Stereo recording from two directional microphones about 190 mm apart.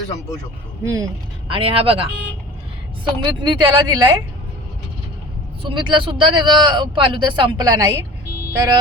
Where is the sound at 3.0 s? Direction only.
25° right (ahead or behind).